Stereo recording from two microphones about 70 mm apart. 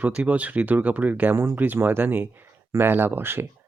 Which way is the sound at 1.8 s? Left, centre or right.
Right.